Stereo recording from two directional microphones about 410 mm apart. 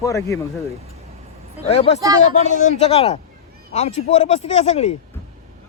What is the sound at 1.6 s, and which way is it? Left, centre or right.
A man's voice, centre.